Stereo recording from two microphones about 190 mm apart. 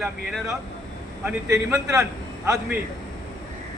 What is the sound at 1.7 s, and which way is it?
Speech, 5° right (ahead or behind).